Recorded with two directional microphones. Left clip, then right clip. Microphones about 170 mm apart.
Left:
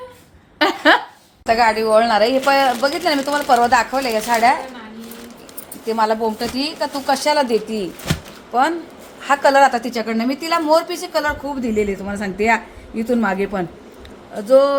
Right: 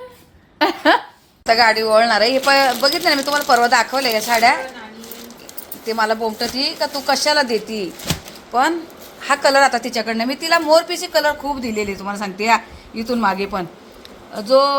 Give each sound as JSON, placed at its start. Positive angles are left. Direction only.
{"t": 0.6, "sound": "a woman's voice", "side_deg": -5}
{"t": 5.8, "sound": "a woman's voice", "side_deg": 10}